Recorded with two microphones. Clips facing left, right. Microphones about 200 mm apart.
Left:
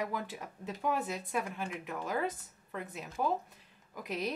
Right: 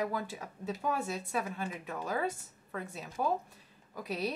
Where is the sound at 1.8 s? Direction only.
5° left (ahead or behind).